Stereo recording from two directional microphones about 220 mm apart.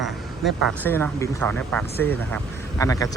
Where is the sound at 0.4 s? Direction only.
10° left (ahead or behind).